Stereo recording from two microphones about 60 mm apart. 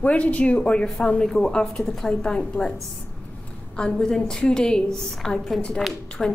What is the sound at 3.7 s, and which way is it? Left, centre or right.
A woman's voice, centre.